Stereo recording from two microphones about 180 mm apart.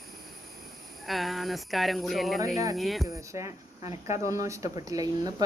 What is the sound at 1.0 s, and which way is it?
Speech, centre (ahead or behind).